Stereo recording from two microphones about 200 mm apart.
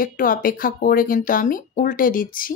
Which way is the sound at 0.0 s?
45° left (ahead or behind).